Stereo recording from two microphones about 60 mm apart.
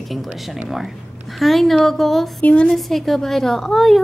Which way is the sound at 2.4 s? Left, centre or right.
Left.